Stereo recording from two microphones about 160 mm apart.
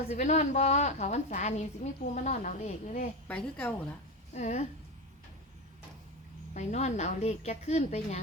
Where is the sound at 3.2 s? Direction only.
5° left (ahead or behind).